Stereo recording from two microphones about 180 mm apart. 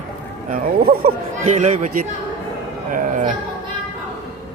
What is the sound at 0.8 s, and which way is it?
Speech, 55° right (ahead or behind).